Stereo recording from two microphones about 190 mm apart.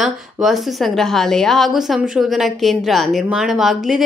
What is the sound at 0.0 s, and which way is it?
A woman's voice, centre (ahead or behind).